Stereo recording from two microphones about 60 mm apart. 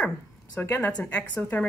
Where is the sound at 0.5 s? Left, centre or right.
Left.